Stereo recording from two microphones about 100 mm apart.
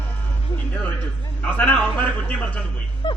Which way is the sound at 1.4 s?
15° left (ahead or behind).